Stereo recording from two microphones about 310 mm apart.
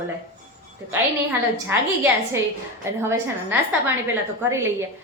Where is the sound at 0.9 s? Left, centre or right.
Centre.